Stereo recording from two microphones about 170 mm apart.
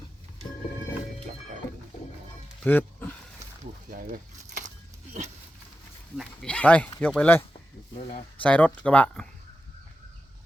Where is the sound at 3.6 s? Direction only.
55° right (ahead or behind).